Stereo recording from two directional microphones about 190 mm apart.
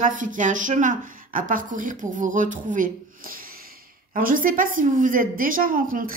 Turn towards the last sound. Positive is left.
turn(degrees=-45)  # may be behind; listen again after turning